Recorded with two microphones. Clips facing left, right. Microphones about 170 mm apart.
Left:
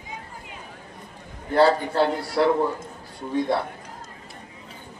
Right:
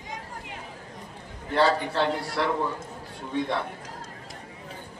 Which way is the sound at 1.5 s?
40° left (ahead or behind).